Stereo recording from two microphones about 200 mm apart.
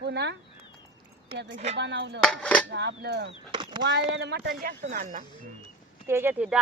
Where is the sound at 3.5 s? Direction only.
20° right (ahead or behind).